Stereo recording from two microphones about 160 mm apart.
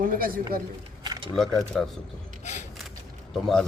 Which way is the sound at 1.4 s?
5° left (ahead or behind).